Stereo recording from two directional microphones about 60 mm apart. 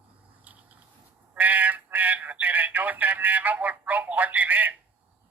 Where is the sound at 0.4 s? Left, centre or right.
Right.